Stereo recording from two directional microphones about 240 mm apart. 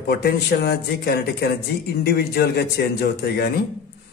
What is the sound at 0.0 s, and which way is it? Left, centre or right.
A man's voice, left.